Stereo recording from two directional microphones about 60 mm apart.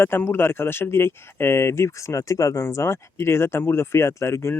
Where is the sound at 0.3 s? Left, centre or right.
Left.